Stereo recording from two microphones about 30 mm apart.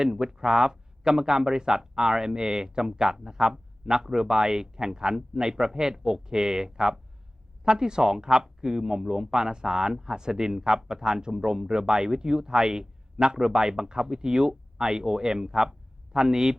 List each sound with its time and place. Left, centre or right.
0.0 s speech: right